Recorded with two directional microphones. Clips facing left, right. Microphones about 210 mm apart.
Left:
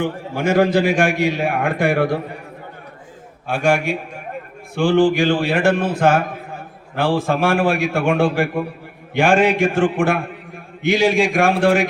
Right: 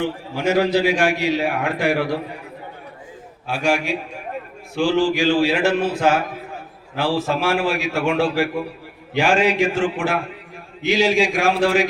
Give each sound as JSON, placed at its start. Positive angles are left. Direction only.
{"t": 0.0, "sound": "a man's voice", "side_deg": 50}
{"t": 3.4, "sound": "a man's voice", "side_deg": 55}